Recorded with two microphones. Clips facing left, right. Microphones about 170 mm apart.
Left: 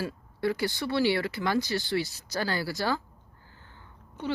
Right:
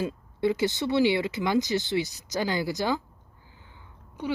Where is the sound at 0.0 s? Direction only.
20° right (ahead or behind).